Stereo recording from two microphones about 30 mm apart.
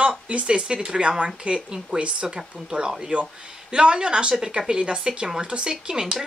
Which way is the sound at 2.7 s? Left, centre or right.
Right.